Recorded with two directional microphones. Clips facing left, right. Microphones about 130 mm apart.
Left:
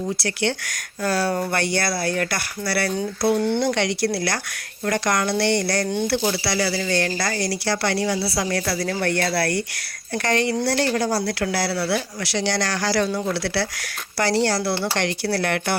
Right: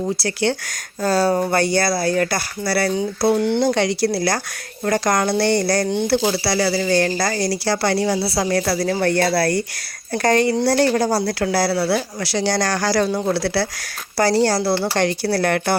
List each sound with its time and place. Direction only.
0.2 s speech: 35° right (ahead or behind)